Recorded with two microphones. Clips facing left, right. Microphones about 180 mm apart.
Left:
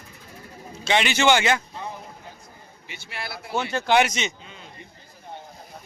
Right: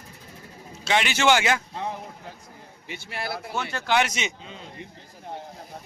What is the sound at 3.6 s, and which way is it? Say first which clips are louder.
Speech: left 4 dB; 20° left (ahead or behind).